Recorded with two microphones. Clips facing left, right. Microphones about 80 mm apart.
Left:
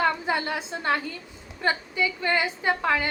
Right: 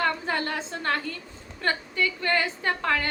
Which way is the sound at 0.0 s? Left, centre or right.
Centre.